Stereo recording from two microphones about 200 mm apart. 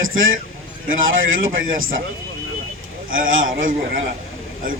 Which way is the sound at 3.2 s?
80° right.